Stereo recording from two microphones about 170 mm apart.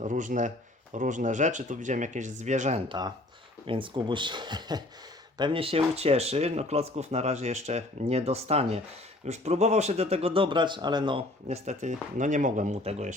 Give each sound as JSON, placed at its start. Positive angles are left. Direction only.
{"t": 0.0, "sound": "speech", "side_deg": -50}
{"t": 3.7, "sound": "speech", "side_deg": -30}
{"t": 11.4, "sound": "speech", "side_deg": -40}